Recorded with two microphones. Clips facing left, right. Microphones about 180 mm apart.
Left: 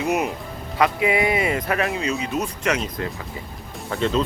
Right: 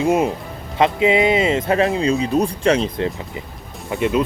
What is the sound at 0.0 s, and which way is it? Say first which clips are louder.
Speech: right 5 dB; 30° right (ahead or behind).